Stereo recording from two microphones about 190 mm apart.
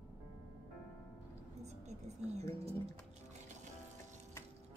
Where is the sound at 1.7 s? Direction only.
35° right (ahead or behind).